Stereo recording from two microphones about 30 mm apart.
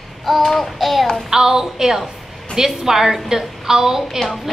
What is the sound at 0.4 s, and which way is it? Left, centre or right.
Child singing, centre.